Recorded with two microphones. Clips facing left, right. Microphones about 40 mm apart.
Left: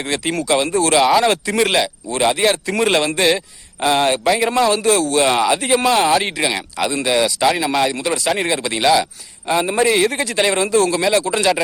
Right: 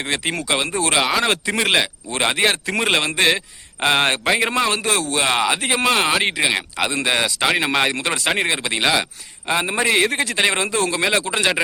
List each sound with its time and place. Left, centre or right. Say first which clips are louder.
0.0 s a man's voice: left 2 dB; right
2.1 s a man's voice: left 3 dB; right; by 3.4 s centre
3.8 s speech: left 2 dB; right
4.5 s a man's voice: left 5 dB; centre
6.6 s speech: left 1 dB; right
8.4 s speech: left 1 dB; right